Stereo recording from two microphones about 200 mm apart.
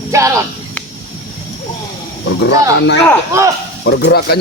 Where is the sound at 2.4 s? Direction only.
60° left (ahead or behind).